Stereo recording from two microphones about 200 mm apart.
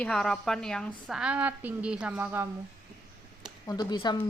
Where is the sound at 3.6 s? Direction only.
20° left (ahead or behind).